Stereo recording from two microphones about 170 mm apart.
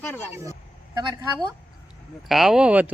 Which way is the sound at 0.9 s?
25° right (ahead or behind).